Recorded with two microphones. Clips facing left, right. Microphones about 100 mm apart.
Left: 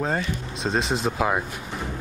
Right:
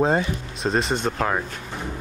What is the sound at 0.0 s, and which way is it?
Speech, 20° right (ahead or behind).